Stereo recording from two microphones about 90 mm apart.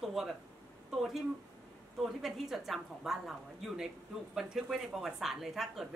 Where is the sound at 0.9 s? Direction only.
5° right (ahead or behind).